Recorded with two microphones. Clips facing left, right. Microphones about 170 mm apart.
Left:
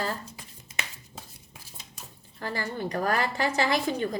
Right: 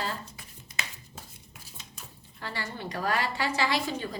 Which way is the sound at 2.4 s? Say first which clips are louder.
Left 5 dB; 45° left (ahead or behind).